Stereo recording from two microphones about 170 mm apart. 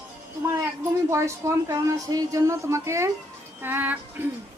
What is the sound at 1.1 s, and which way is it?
Speech, 15° right (ahead or behind).